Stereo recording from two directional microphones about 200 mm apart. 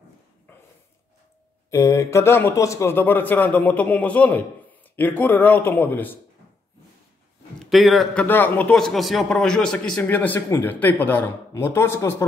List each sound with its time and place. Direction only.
1.7 s a man's voice: 15° left (ahead or behind)
7.5 s a man's voice: centre (ahead or behind)